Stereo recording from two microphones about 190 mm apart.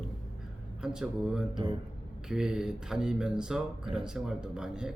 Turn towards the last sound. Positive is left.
turn(degrees=-5)  # may be behind; listen again after turning